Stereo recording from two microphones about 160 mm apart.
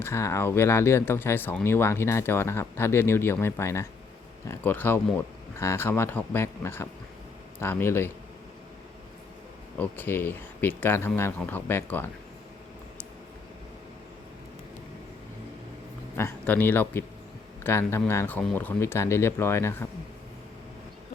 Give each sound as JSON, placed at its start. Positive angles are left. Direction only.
{"t": 0.0, "sound": "speech", "side_deg": 15}
{"t": 9.7, "sound": "speech", "side_deg": 10}
{"t": 16.1, "sound": "speech", "side_deg": 15}